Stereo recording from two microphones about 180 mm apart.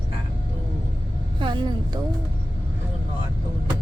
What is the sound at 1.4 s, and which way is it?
Speech, 25° right (ahead or behind).